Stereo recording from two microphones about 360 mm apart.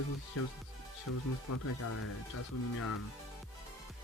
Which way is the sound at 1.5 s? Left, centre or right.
Left.